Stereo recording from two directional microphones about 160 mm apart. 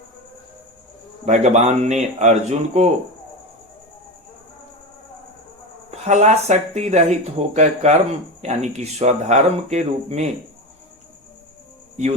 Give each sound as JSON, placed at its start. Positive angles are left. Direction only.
{"t": 1.2, "sound": "speech", "side_deg": -45}
{"t": 5.9, "sound": "speech", "side_deg": -45}